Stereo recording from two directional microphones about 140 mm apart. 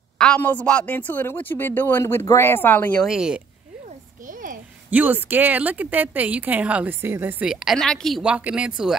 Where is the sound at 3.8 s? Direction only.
70° right (ahead or behind).